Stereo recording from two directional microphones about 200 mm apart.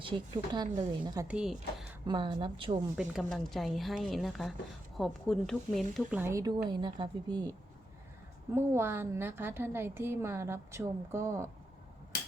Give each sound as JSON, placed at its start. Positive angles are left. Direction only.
{"t": 0.5, "sound": "a woman's voice", "side_deg": -20}
{"t": 1.3, "sound": "speech", "side_deg": -5}
{"t": 2.0, "sound": "a woman's voice", "side_deg": -25}
{"t": 3.0, "sound": "speech", "side_deg": 0}
{"t": 6.1, "sound": "a woman's voice", "side_deg": -15}
{"t": 8.5, "sound": "a woman's voice", "side_deg": -10}